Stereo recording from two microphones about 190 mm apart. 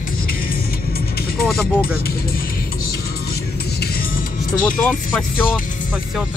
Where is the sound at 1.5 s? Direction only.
Centre (ahead or behind).